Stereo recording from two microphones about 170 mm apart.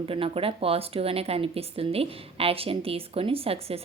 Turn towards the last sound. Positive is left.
turn(degrees=-35)  # may be behind; listen again after turning